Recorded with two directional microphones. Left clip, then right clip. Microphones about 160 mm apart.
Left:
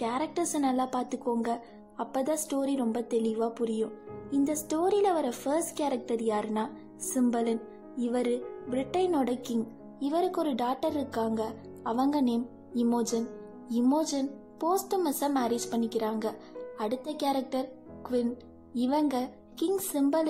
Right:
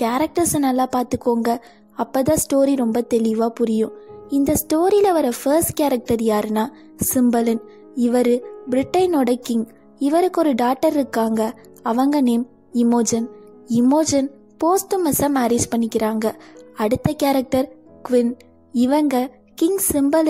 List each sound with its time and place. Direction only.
0.0 s a woman's voice: 50° right (ahead or behind)